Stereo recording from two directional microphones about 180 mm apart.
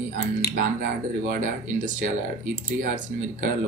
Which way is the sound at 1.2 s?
45° right (ahead or behind).